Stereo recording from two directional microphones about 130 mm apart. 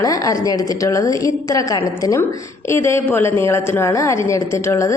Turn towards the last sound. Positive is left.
turn(degrees=20)  # may be behind; listen again after turning